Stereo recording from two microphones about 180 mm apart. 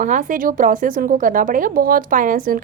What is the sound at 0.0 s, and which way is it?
Speech, 45° right (ahead or behind).